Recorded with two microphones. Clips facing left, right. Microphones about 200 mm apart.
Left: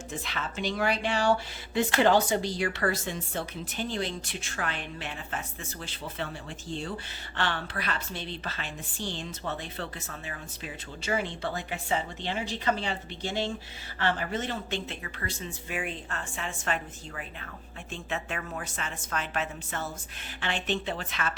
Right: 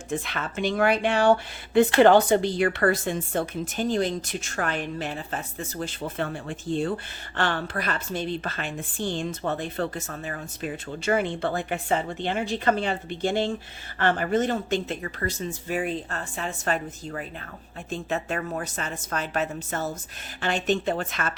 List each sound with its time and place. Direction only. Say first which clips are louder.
0.1 s a woman's voice: right 8 dB; 55° right (ahead or behind)